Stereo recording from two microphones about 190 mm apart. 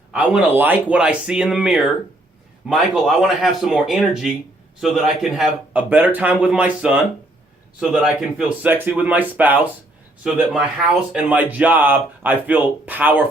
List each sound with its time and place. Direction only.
0.1 s a man's voice: 5° right (ahead or behind)